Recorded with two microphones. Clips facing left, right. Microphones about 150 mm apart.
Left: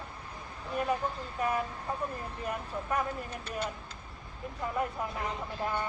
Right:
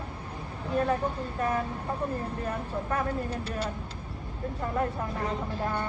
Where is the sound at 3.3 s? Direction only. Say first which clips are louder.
Right 4 dB; 35° right (ahead or behind).